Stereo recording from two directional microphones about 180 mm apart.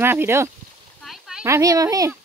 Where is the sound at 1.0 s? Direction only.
Centre (ahead or behind).